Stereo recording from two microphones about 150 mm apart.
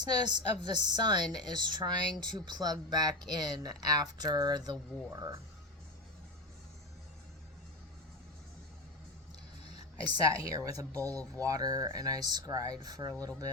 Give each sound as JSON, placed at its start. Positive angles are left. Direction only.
{"t": 0.0, "sound": "speech", "side_deg": -30}
{"t": 10.2, "sound": "speech", "side_deg": -20}